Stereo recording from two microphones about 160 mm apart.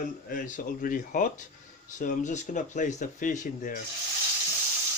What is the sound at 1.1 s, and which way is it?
Speech, 55° left (ahead or behind).